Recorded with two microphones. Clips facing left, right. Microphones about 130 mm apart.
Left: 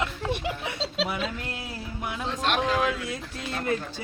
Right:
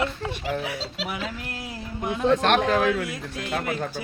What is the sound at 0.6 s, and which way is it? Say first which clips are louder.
Speech: left 2 dB; 25° left (ahead or behind).